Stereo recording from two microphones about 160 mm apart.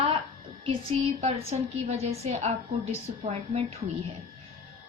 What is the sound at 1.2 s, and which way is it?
A woman's voice, 40° right (ahead or behind).